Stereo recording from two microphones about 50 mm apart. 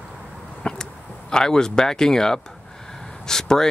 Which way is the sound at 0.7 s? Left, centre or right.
Centre.